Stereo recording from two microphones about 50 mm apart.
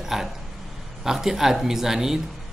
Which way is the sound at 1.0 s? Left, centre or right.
Centre.